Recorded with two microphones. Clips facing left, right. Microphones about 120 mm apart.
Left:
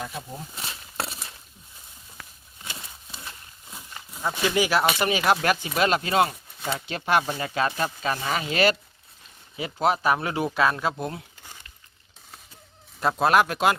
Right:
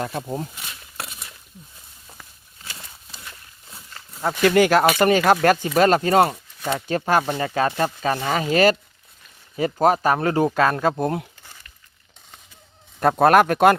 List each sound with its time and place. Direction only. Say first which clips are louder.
0.0 s speech: right 8 dB; 65° right (ahead or behind)
0.5 s a sound: left 3 dB; 30° left (ahead or behind)
2.6 s horse: left 1 dB; 20° left (ahead or behind)
3.7 s livestock: left 1 dB; 15° left (ahead or behind)
4.4 s speech: right 7 dB; 55° right (ahead or behind)
13.0 s speech: right 6 dB; 55° right (ahead or behind)